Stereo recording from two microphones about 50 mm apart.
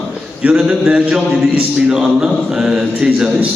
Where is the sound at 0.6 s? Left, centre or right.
Centre.